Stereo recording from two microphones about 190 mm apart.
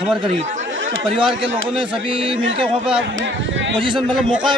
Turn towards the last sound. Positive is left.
turn(degrees=-25)  # may be behind; listen again after turning